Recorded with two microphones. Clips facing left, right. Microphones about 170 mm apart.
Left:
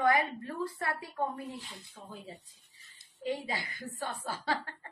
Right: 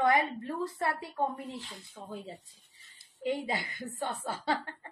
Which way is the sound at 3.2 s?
25° right (ahead or behind).